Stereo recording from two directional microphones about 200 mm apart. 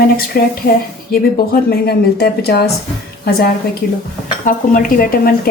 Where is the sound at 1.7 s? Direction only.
50° left (ahead or behind).